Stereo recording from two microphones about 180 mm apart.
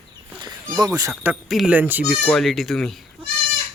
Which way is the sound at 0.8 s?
20° right (ahead or behind).